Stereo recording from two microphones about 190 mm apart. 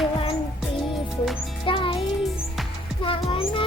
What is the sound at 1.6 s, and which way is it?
Music, 25° left (ahead or behind).